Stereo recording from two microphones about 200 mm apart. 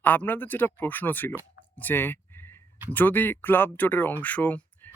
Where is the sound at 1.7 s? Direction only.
10° left (ahead or behind).